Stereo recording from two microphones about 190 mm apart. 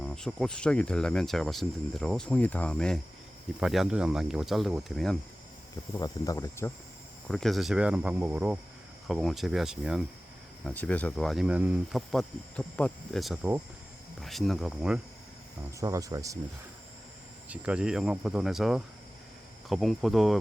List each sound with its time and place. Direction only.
0.0 s speech: 5° left (ahead or behind)
6.0 s speech: 20° left (ahead or behind)
7.3 s speech: centre (ahead or behind)
10.7 s speech: 5° left (ahead or behind)
15.8 s speech: 15° right (ahead or behind)
17.5 s speech: 5° right (ahead or behind)